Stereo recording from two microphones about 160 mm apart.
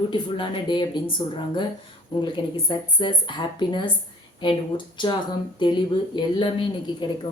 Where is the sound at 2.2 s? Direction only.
30° left (ahead or behind).